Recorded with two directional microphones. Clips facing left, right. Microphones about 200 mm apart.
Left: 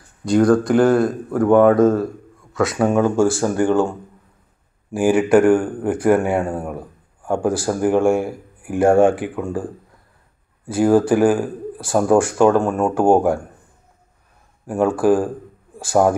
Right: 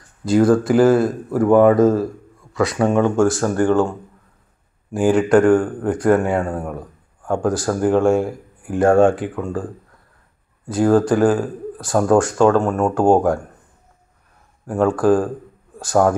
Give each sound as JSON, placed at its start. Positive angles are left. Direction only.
{"t": 0.2, "sound": "speech", "side_deg": 0}
{"t": 4.9, "sound": "speech", "side_deg": 10}
{"t": 10.7, "sound": "speech", "side_deg": 10}
{"t": 14.7, "sound": "speech", "side_deg": 10}